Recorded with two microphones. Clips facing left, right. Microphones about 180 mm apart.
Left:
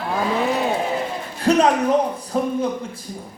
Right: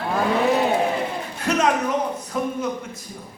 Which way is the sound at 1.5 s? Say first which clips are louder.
Left 5 dB; 30° left (ahead or behind).